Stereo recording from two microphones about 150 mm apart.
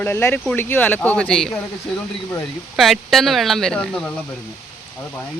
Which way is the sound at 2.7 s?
Centre (ahead or behind).